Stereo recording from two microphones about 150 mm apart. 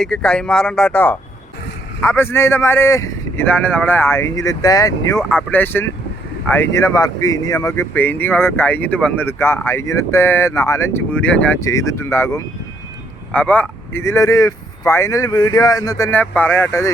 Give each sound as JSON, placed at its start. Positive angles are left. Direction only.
{"t": 0.0, "sound": "speech", "side_deg": 5}